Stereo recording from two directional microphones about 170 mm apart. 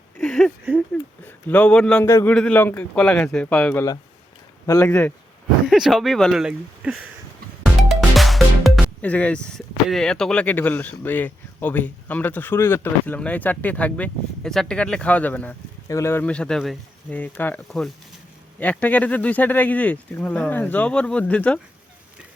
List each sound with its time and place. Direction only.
0.2 s a sound: 5° left (ahead or behind)
1.2 s speech: 10° left (ahead or behind)
2.0 s speech: 15° left (ahead or behind)
4.9 s speech: 10° left (ahead or behind)
5.6 s speech: centre (ahead or behind)